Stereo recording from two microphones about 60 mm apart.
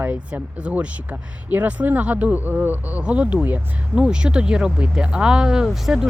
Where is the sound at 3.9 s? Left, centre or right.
Centre.